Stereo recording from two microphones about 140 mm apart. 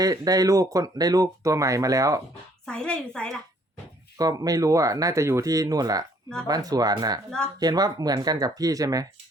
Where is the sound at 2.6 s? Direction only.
5° left (ahead or behind).